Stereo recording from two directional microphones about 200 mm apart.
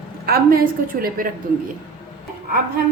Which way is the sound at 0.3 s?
45° right (ahead or behind).